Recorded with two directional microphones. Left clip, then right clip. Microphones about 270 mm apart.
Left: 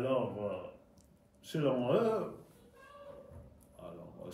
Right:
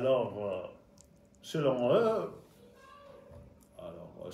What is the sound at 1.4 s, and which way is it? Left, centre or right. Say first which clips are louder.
Speech: right 4 dB; centre.